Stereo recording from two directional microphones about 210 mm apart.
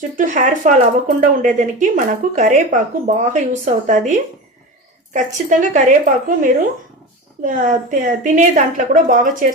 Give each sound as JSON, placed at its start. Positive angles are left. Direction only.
{"t": 0.2, "sound": "speech", "side_deg": -35}